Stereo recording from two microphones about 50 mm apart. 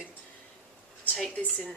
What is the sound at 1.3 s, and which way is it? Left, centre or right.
Speech, left.